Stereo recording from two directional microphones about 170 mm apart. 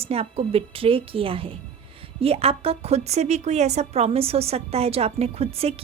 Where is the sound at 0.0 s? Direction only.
35° right (ahead or behind).